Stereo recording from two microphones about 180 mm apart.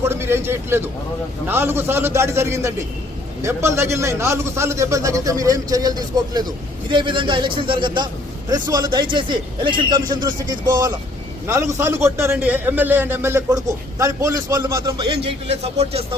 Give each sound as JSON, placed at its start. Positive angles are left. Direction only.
{"t": 0.0, "sound": "a man's voice", "side_deg": -15}
{"t": 15.2, "sound": "speech", "side_deg": -35}